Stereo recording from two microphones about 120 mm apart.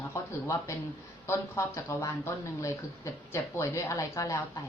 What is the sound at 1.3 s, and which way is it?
A woman's voice, 25° left (ahead or behind).